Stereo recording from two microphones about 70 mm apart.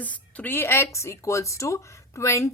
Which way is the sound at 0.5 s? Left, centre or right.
Left.